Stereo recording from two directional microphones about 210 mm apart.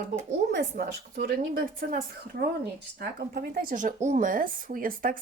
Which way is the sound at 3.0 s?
50° right (ahead or behind).